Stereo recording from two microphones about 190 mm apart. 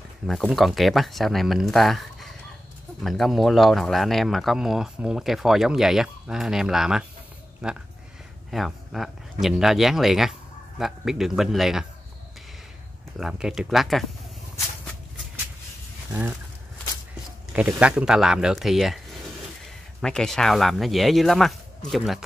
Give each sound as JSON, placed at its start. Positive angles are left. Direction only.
{"t": 0.3, "sound": "speech", "side_deg": 0}
{"t": 13.2, "sound": "speech", "side_deg": -5}
{"t": 17.5, "sound": "speech", "side_deg": -5}
{"t": 20.0, "sound": "speech", "side_deg": 5}